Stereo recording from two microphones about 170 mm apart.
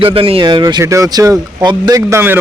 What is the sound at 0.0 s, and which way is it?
Speech, 30° right (ahead or behind).